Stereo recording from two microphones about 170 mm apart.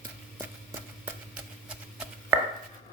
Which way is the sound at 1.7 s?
10° right (ahead or behind).